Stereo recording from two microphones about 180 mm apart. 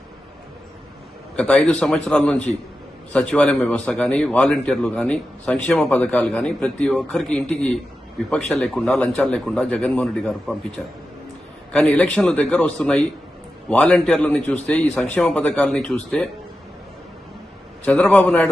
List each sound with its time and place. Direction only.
1.4 s a man's voice: 5° left (ahead or behind)
17.8 s a man's voice: 5° left (ahead or behind)